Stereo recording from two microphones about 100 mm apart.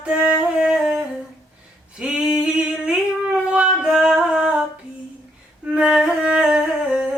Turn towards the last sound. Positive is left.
turn(degrees=-10)  # may be behind; listen again after turning